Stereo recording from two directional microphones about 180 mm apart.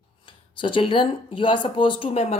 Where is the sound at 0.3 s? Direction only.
25° left (ahead or behind).